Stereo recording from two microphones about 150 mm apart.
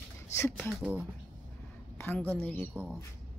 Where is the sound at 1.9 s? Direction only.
15° left (ahead or behind).